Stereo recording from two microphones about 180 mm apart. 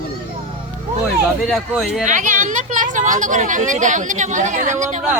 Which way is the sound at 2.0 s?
45° right (ahead or behind).